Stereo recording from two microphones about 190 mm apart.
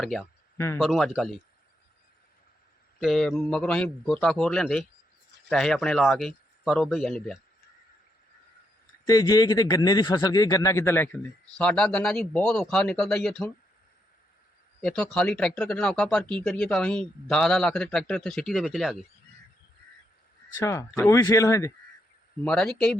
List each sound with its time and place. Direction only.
0.0 s speech: centre (ahead or behind)
0.5 s speech: 15° left (ahead or behind)
0.8 s speech: centre (ahead or behind)
3.0 s speech: centre (ahead or behind)
9.0 s a man's voice: 20° left (ahead or behind); by 13.5 s 5° left (ahead or behind)
14.8 s speech: 5° left (ahead or behind)
20.6 s a man's voice: 15° left (ahead or behind)
22.4 s speech: 5° left (ahead or behind)